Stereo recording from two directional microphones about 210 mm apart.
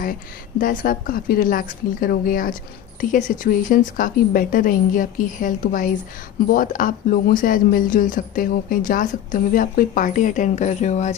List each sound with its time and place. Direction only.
0.6 s speech: 45° left (ahead or behind)